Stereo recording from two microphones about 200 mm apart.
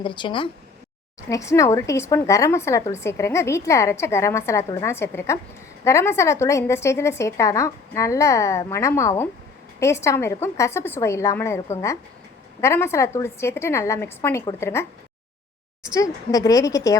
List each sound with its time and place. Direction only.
0.0 s a woman's voice: 25° left (ahead or behind)
12.6 s a woman's voice: 15° left (ahead or behind)
15.9 s a woman's voice: 15° left (ahead or behind)